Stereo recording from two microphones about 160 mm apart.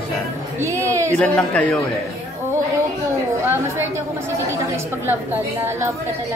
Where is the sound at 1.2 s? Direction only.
5° left (ahead or behind).